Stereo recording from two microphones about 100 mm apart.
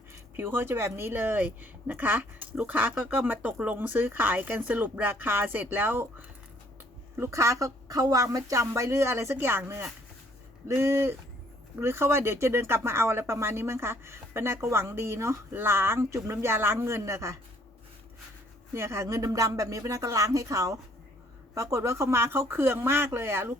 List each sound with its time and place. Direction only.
0.1 s speech: 25° right (ahead or behind)
18.7 s speech: 30° right (ahead or behind)